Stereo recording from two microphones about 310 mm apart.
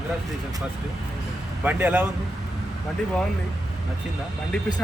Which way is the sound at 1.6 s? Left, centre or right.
Centre.